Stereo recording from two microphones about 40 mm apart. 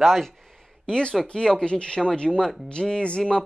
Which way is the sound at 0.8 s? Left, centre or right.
Centre.